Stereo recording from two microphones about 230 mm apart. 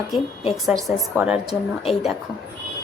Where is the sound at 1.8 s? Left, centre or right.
Left.